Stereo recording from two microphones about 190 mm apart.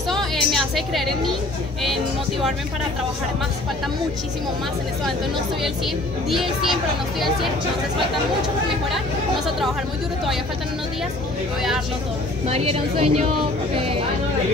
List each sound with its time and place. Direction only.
0.1 s music: centre (ahead or behind)
6.3 s speech: centre (ahead or behind)
12.4 s speech: 30° right (ahead or behind)